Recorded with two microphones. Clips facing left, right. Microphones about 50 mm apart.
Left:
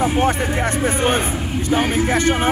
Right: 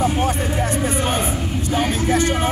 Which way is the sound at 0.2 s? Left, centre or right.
Left.